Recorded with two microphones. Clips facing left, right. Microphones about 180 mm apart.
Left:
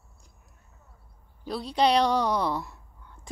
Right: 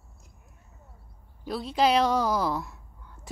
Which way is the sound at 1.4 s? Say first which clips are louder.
Even; centre (ahead or behind).